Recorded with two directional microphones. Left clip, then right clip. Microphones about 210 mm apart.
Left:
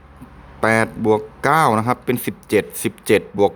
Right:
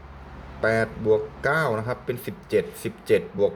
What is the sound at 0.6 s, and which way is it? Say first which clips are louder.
A man's voice: left 6 dB; 45° left (ahead or behind).